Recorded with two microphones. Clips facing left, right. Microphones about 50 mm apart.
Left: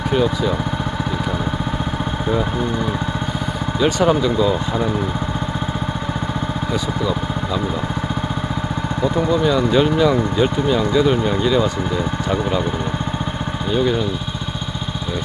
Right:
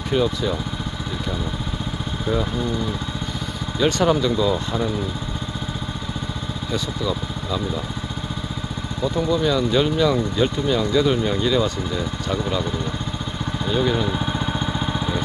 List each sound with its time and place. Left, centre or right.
0.1 s speech: centre
3.8 s speech: centre
9.3 s speech: centre
12.3 s speech: left
13.7 s speech: centre